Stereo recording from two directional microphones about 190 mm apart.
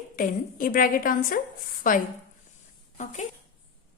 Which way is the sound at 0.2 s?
45° left (ahead or behind).